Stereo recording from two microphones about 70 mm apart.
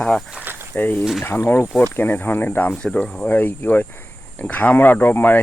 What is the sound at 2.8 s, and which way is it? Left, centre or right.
Speech, centre.